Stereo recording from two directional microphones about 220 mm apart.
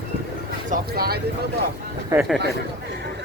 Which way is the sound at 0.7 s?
45° right (ahead or behind).